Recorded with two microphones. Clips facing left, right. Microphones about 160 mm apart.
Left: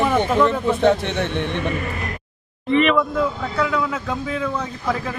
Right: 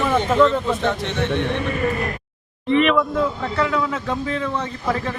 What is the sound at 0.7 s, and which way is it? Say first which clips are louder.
Speech: left 4 dB; 55° left (ahead or behind).